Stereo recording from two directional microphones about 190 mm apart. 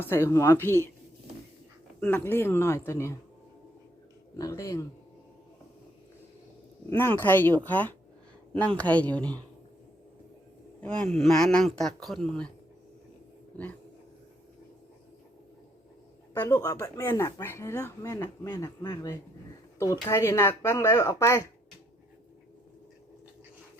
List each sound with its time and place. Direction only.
0.0 s speech: 10° left (ahead or behind)
2.0 s speech: 10° left (ahead or behind)
4.4 s speech: 20° left (ahead or behind)
6.9 s speech: 10° left (ahead or behind)
10.8 s speech: 5° left (ahead or behind)
16.3 s speech: 15° left (ahead or behind)